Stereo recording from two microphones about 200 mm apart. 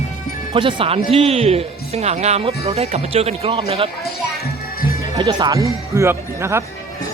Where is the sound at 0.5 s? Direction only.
25° right (ahead or behind).